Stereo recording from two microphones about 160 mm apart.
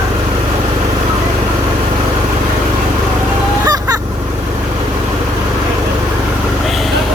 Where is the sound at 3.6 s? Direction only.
25° right (ahead or behind).